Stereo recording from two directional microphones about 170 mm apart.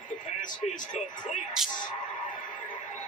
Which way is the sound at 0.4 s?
50° left (ahead or behind).